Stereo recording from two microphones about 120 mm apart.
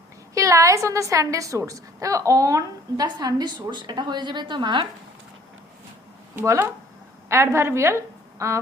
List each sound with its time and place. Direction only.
0.3 s a woman's voice: 25° right (ahead or behind)
6.3 s a woman's voice: 20° right (ahead or behind)